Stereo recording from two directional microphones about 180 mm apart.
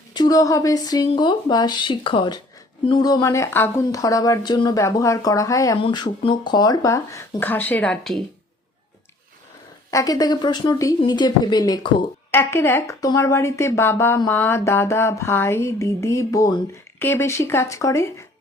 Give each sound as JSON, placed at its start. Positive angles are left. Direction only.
{"t": 0.1, "sound": "speech", "side_deg": 20}
{"t": 9.9, "sound": "speech", "side_deg": 20}